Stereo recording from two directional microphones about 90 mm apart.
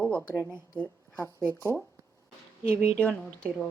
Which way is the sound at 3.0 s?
15° left (ahead or behind).